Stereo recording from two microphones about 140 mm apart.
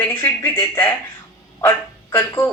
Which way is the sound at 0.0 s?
15° left (ahead or behind).